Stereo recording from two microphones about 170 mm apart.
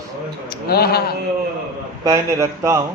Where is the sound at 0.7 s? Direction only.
65° left (ahead or behind).